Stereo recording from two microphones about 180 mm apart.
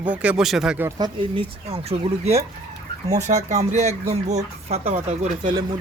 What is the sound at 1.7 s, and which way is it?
Speech, 35° right (ahead or behind).